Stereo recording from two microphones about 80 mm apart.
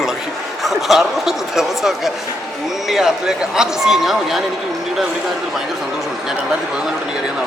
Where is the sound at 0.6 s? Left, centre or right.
Centre.